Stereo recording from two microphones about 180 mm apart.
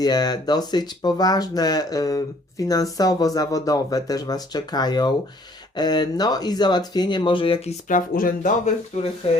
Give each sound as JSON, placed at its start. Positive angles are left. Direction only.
{"t": 0.0, "sound": "speech", "side_deg": 20}